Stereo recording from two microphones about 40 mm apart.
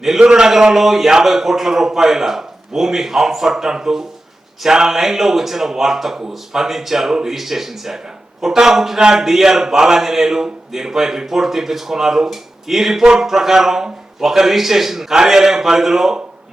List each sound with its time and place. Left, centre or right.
0.2 s speech: centre
0.5 s speech: centre
9.0 s speech: centre
9.2 s speech: centre